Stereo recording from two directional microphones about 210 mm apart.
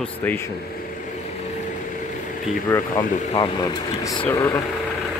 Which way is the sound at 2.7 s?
20° left (ahead or behind).